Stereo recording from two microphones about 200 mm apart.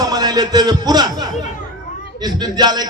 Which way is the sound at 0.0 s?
20° right (ahead or behind).